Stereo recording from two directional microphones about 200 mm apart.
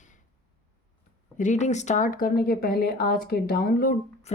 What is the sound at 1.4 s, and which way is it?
Speech, 35° left (ahead or behind).